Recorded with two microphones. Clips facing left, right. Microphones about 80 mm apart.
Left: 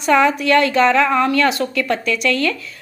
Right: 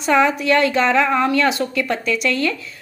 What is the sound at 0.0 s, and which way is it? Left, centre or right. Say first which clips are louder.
A woman's voice: left 2 dB; centre.